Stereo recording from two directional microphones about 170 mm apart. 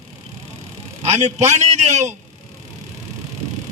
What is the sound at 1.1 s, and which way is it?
Speech, 40° right (ahead or behind).